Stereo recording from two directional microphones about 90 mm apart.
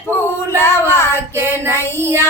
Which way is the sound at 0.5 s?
30° left (ahead or behind).